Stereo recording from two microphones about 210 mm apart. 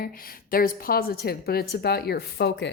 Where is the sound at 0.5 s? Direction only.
45° left (ahead or behind).